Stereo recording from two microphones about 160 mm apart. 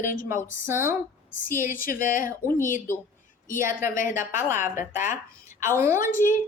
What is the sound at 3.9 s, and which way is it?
Speech, 55° left (ahead or behind).